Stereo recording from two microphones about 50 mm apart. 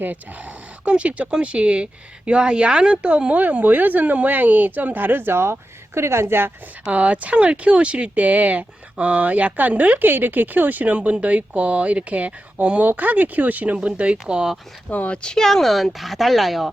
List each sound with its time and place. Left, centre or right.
0.0 s speech: right
6.8 s speech: right
10.1 s speech: right; by 14.5 s centre
14.8 s speech: left
15.1 s speech: centre